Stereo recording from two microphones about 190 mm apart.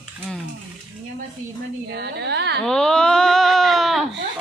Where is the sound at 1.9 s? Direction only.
60° right (ahead or behind).